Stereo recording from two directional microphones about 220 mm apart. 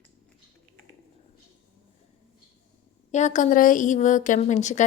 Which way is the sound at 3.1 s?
35° left (ahead or behind).